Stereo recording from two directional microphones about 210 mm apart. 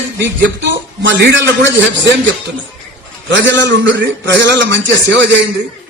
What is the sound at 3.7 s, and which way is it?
A man's voice, 55° right (ahead or behind).